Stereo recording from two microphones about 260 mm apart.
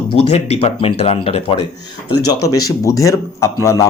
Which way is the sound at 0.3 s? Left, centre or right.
Left.